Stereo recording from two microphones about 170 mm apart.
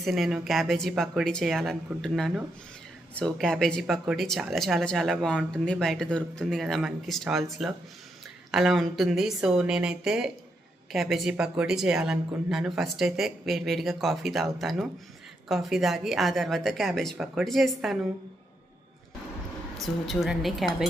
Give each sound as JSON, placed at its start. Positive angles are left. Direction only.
{"t": 0.0, "sound": "speech", "side_deg": 0}
{"t": 19.7, "sound": "speech", "side_deg": 0}